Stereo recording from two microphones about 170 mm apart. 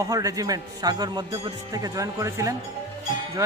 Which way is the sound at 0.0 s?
20° right (ahead or behind).